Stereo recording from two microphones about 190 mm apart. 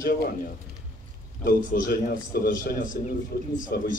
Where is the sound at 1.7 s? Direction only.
50° left (ahead or behind).